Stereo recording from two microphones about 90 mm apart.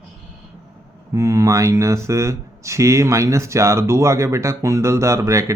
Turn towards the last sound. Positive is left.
turn(degrees=-35)  # may be behind; listen again after turning